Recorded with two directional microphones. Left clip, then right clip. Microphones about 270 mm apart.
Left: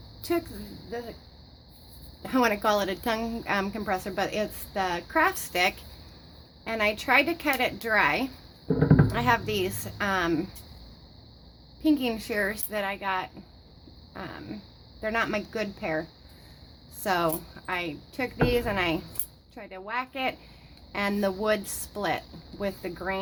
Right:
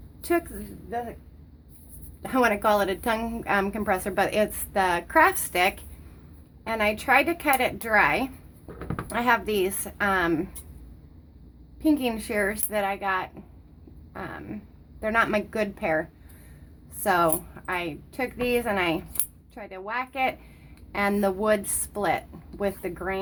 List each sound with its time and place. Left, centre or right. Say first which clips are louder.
0.2 s a sound: right 3 dB; centre
2.2 s a woman's voice: right 2 dB; centre
11.8 s a woman's voice: right 1 dB; centre